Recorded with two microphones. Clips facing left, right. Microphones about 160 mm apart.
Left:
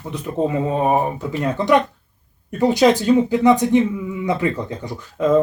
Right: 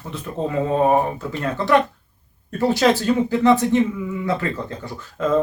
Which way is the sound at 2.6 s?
15° left (ahead or behind).